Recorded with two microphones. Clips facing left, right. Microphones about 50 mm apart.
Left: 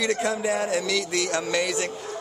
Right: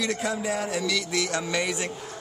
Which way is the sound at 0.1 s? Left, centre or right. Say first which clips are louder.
Left 3 dB; centre.